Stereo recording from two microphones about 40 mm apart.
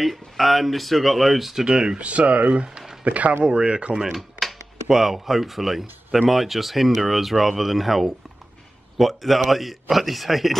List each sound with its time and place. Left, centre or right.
0.0 s speech: centre
1.7 s speech: centre
2.0 s speech: right
3.4 s speech: right
4.1 s a sound: centre
4.8 s speech: centre